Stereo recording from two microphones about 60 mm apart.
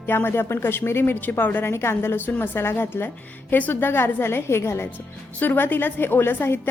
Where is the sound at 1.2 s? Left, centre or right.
Left.